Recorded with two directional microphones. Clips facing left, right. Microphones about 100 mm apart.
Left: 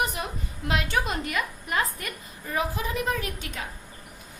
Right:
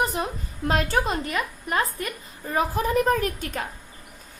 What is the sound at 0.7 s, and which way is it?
A woman's voice, 40° right (ahead or behind).